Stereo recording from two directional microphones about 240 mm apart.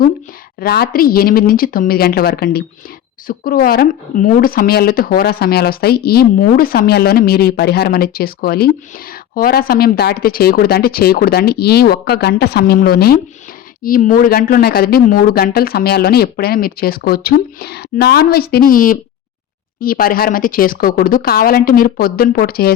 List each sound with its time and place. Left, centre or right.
0.6 s speech: left